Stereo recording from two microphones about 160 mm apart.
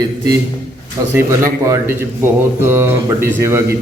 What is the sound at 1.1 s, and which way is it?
Speech, 20° right (ahead or behind).